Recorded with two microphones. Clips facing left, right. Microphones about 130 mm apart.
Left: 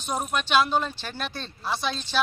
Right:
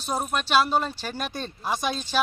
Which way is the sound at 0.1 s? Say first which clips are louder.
Right 1 dB; 5° right (ahead or behind).